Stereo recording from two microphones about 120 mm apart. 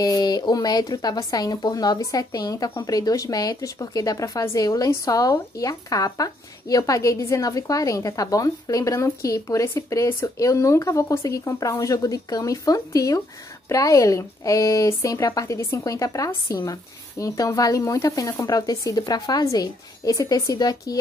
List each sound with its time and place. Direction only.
0.0 s speech: 35° left (ahead or behind)